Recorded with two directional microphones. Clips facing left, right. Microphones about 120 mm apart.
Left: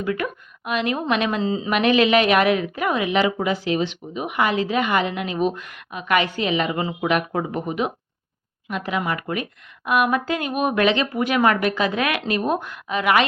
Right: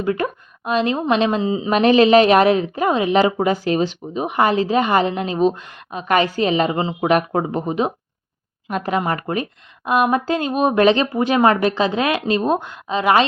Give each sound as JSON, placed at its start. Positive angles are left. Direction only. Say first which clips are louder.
{"t": 0.0, "sound": "a woman's voice", "louder": "right 4 dB", "side_deg": -30}
{"t": 1.7, "sound": "a woman's voice", "louder": "right 5 dB", "side_deg": -35}
{"t": 8.7, "sound": "a woman's voice", "louder": "right 4 dB", "side_deg": -40}